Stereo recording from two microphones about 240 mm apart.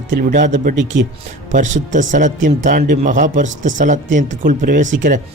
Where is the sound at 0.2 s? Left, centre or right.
Right.